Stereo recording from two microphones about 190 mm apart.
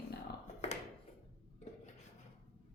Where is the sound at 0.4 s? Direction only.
40° left (ahead or behind).